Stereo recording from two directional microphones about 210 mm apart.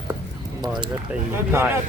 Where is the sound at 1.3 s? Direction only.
10° right (ahead or behind).